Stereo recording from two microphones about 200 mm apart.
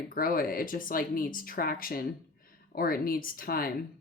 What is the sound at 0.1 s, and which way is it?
Speech, 45° left (ahead or behind).